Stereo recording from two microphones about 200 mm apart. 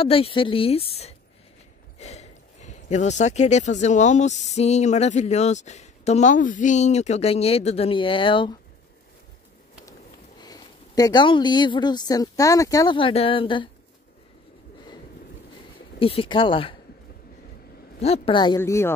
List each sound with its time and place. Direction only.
0.0 s a woman's voice: 25° left (ahead or behind)
10.4 s speech: 20° left (ahead or behind)
16.0 s a woman's voice: 30° left (ahead or behind)
18.0 s a woman's voice: 30° left (ahead or behind); by 18.9 s 15° left (ahead or behind)